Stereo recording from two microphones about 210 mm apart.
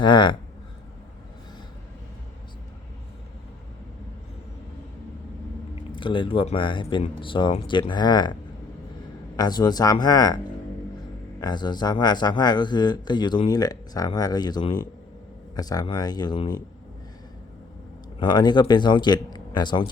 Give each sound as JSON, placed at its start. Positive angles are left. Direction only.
{"t": 0.0, "sound": "speech", "side_deg": 20}
{"t": 6.0, "sound": "speech", "side_deg": 25}
{"t": 18.2, "sound": "speech", "side_deg": 20}